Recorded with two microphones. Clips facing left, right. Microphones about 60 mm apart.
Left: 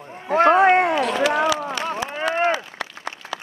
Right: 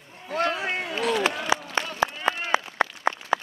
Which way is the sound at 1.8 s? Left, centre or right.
Right.